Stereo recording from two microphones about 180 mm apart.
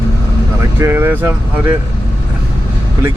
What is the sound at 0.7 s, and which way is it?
Speech, 15° right (ahead or behind).